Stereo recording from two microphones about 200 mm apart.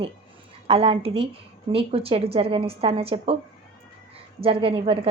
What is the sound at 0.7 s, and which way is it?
A woman's voice, 30° right (ahead or behind).